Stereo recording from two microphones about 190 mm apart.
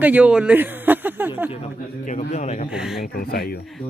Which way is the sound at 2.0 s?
40° left (ahead or behind).